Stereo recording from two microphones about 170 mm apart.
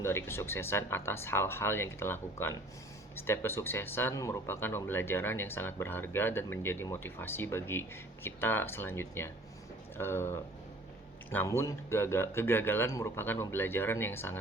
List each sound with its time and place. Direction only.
0.0 s speech: 15° left (ahead or behind)